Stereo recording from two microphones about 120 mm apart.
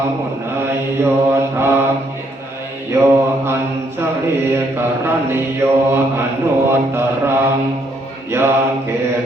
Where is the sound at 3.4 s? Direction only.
20° right (ahead or behind).